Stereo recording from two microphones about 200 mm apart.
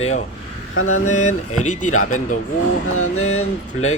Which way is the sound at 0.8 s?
90° left.